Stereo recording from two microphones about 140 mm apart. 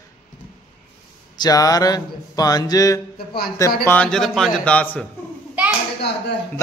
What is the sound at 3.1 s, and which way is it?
Speech, 90° left.